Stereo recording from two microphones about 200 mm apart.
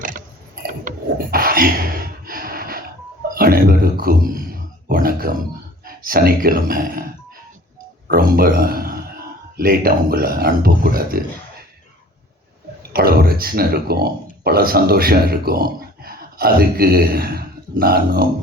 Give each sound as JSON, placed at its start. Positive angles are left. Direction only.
{"t": 0.7, "sound": "mechanisms", "side_deg": -45}
{"t": 3.3, "sound": "a sound", "side_deg": -45}
{"t": 5.8, "sound": "speech", "side_deg": -45}
{"t": 8.0, "sound": "a man's voice", "side_deg": -50}
{"t": 12.9, "sound": "speech", "side_deg": -50}